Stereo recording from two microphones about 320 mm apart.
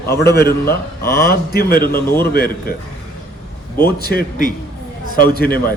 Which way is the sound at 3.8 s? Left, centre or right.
Left.